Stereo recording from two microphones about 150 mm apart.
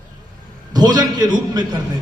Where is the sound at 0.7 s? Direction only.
25° right (ahead or behind).